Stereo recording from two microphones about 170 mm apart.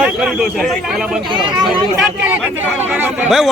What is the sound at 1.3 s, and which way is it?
Speech, 30° right (ahead or behind).